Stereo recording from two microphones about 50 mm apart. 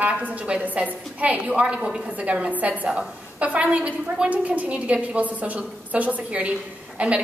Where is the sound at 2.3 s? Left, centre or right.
Right.